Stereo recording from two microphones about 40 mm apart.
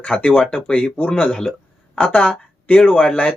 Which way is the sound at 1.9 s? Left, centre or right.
Left.